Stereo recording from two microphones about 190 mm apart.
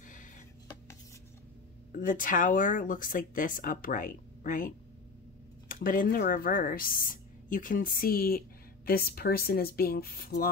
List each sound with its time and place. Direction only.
1.9 s speech: 45° left (ahead or behind)